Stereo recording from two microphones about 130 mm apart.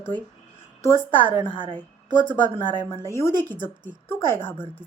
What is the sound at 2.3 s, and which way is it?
A woman's voice, 15° left (ahead or behind).